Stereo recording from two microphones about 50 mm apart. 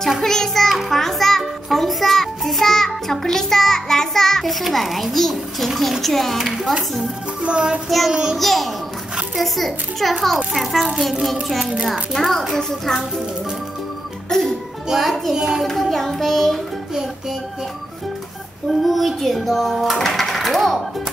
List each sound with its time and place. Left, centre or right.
0.2 s music: centre
6.4 s speech: centre
7.4 s child singing: right
8.1 s speech: centre
8.4 s speech: centre
14.3 s a child's voice: centre
14.9 s speech: centre
15.3 s speech: centre
15.6 s speech: centre
18.7 s speech: centre